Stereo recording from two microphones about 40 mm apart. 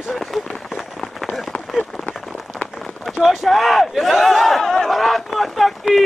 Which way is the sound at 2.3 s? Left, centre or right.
Centre.